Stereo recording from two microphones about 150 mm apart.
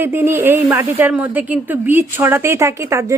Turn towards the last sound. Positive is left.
turn(degrees=-20)  # may be behind; listen again after turning